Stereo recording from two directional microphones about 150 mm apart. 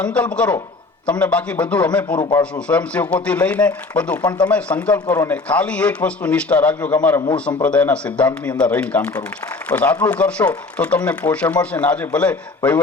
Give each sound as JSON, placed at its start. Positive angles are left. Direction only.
{"t": 0.0, "sound": "a man's voice", "side_deg": 10}
{"t": 5.0, "sound": "a man's voice", "side_deg": 20}
{"t": 5.5, "sound": "a man's voice", "side_deg": 10}